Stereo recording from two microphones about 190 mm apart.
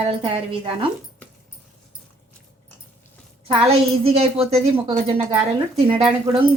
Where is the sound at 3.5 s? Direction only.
30° right (ahead or behind).